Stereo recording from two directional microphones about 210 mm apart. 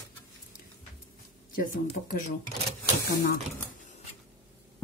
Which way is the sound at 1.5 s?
40° left (ahead or behind).